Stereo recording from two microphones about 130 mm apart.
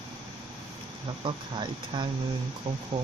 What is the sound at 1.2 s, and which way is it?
Speech, 35° right (ahead or behind).